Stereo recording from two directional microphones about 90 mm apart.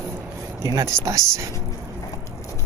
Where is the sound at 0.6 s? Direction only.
40° right (ahead or behind).